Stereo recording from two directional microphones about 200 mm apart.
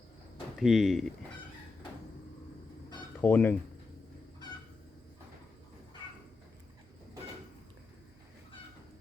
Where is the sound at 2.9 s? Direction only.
15° left (ahead or behind).